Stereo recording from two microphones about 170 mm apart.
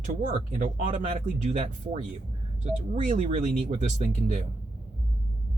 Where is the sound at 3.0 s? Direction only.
50° right (ahead or behind).